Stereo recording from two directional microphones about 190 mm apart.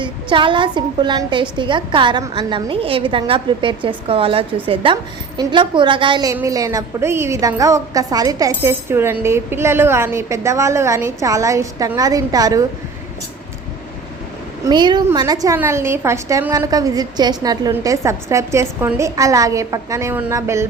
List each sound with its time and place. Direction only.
0.0 s a woman's voice: 25° right (ahead or behind)
14.6 s a woman's voice: 25° right (ahead or behind)